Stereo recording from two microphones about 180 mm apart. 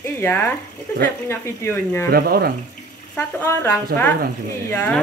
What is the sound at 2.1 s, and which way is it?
Speech, 60° right (ahead or behind).